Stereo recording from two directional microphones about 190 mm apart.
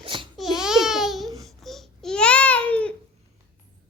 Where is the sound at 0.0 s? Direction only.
25° right (ahead or behind).